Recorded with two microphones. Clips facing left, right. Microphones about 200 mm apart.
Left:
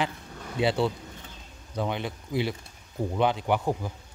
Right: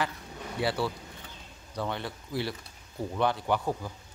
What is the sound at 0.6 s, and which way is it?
Speech, 20° left (ahead or behind).